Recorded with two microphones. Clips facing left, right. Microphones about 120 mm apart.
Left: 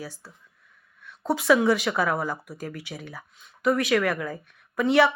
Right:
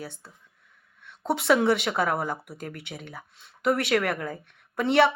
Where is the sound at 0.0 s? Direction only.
25° right (ahead or behind).